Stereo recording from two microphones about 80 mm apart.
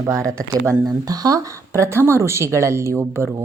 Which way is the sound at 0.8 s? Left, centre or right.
Right.